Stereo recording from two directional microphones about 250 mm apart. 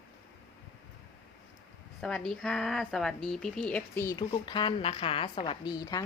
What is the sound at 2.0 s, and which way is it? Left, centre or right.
Speech, centre.